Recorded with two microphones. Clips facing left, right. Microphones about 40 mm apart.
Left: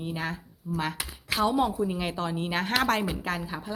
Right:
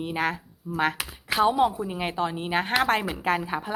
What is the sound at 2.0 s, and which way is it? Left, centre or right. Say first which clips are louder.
Speech: right 2 dB; right.